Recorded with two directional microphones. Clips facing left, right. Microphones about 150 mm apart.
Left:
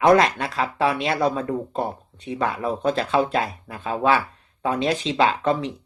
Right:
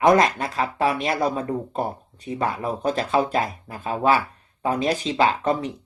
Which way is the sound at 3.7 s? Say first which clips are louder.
Even; 5° right (ahead or behind).